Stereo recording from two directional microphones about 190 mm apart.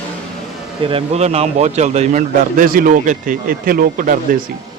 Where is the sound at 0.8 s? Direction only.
30° right (ahead or behind); by 4.4 s 45° right (ahead or behind).